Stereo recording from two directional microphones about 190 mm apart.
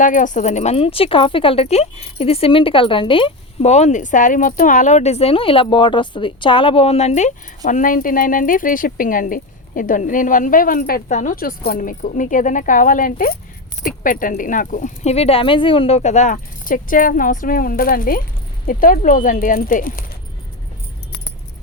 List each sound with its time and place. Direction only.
0.0 s speech: 45° left (ahead or behind)